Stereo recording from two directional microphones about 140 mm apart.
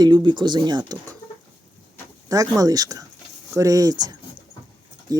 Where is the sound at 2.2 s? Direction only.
25° right (ahead or behind).